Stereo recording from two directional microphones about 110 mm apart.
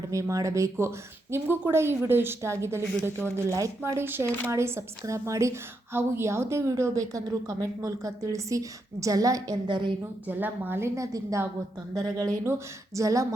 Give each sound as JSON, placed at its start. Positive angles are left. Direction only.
{"t": 0.1, "sound": "a woman's voice", "side_deg": -30}
{"t": 9.6, "sound": "a woman's voice", "side_deg": -45}
{"t": 10.2, "sound": "a woman's voice", "side_deg": -15}